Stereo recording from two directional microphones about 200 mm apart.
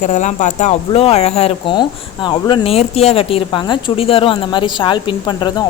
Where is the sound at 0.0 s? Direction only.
35° left (ahead or behind).